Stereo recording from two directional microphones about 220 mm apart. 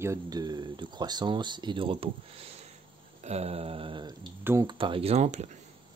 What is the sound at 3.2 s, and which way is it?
Speech, 30° right (ahead or behind).